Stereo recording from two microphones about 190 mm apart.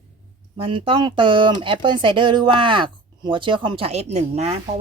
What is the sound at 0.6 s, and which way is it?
Speech, 25° right (ahead or behind).